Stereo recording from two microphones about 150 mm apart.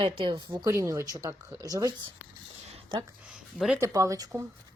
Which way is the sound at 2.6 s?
40° right (ahead or behind).